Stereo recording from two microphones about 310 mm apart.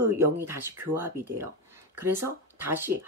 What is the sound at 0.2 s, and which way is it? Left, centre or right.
Speech, centre.